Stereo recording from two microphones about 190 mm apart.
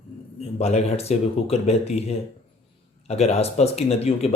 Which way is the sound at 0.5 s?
35° left (ahead or behind).